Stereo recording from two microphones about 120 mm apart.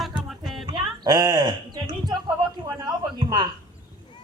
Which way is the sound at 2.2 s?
35° right (ahead or behind).